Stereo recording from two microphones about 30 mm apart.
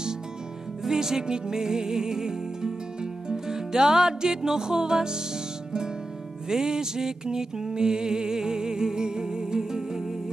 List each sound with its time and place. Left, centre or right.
0.8 s speech: centre
1.2 s music: right
6.5 s music: right